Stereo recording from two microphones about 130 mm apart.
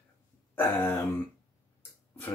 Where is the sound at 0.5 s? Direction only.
15° left (ahead or behind).